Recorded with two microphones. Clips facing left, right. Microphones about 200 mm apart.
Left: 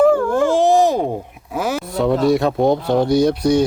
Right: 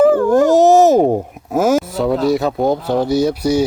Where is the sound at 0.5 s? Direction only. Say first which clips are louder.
Right 5 dB; 45° right (ahead or behind).